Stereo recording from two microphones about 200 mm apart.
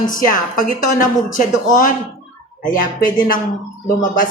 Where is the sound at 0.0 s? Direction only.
40° left (ahead or behind).